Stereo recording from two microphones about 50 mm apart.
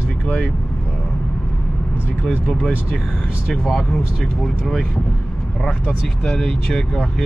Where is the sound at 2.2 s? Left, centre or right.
Centre.